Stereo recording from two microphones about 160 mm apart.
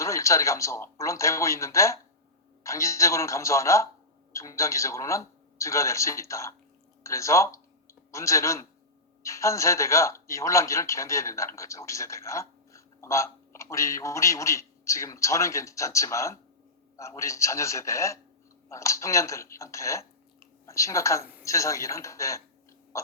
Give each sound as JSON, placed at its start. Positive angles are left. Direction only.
{"t": 0.0, "sound": "a man's voice", "side_deg": 20}